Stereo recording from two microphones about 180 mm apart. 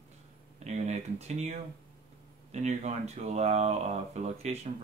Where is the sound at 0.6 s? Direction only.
40° right (ahead or behind).